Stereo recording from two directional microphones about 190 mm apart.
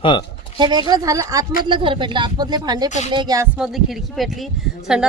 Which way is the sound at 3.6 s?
Centre (ahead or behind).